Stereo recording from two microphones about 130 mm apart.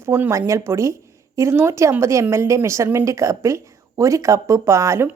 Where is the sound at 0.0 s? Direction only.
20° right (ahead or behind).